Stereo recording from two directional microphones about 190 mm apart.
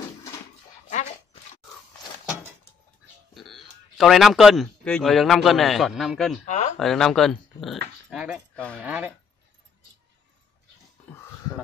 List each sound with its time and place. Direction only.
0.8 s dog: 40° left (ahead or behind)
2.2 s a sound: 10° right (ahead or behind)
3.3 s a man's voice: centre (ahead or behind)
6.4 s speech: 35° left (ahead or behind)
6.8 s speech: centre (ahead or behind)